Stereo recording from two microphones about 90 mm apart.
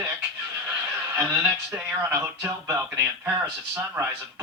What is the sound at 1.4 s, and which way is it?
Speech, 15° right (ahead or behind).